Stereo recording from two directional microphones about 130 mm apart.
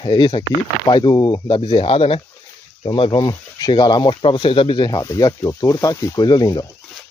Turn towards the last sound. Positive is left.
turn(degrees=30)  # may be behind; listen again after turning